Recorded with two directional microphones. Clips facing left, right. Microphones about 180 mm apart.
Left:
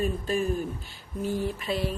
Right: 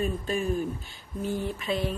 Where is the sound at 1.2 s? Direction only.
5° left (ahead or behind).